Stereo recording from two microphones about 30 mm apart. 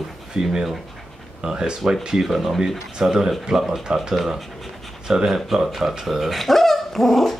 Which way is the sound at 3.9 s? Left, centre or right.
Right.